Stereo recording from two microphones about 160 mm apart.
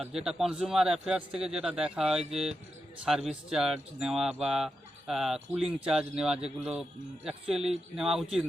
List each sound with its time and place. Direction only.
0.0 s speech: centre (ahead or behind)